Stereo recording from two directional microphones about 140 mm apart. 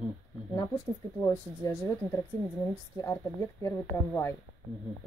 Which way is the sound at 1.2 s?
20° left (ahead or behind).